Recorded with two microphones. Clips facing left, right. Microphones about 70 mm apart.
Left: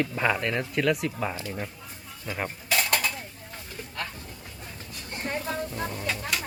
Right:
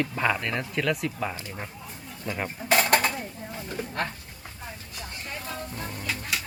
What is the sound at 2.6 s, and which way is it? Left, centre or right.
Dishes, right.